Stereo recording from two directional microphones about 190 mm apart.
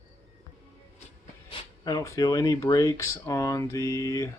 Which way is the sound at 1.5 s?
20° left (ahead or behind).